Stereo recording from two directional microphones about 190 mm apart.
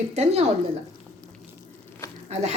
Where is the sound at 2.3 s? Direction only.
35° right (ahead or behind).